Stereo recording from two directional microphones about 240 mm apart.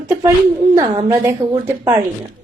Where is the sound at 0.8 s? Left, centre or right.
Right.